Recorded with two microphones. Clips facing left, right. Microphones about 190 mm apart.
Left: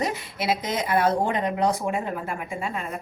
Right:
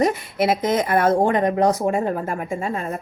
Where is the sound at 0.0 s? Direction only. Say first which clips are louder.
Right 8 dB; 50° right (ahead or behind).